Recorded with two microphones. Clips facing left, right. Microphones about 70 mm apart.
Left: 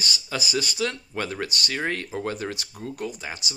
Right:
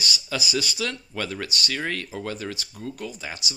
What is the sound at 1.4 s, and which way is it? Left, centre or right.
Speech, left.